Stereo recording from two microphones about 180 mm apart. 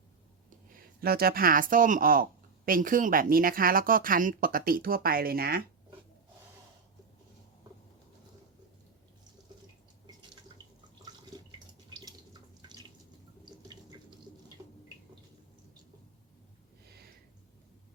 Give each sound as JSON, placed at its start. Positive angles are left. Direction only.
{"t": 1.0, "sound": "speech", "side_deg": -55}
{"t": 11.9, "sound": "drip", "side_deg": -25}